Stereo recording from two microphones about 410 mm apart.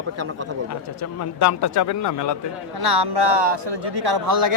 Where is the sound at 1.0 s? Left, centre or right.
Left.